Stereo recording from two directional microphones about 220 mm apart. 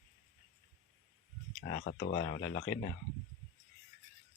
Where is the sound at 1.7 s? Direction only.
40° left (ahead or behind).